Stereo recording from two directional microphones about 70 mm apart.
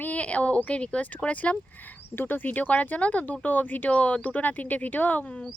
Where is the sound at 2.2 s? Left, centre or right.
Left.